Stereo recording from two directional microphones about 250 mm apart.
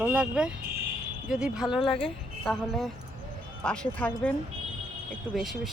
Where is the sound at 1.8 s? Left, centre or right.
Left.